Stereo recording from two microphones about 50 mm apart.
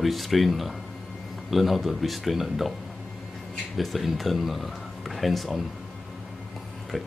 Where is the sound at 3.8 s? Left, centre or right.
Centre.